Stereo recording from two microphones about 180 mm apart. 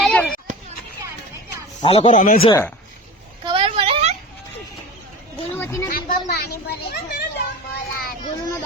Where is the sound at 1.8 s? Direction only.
30° left (ahead or behind).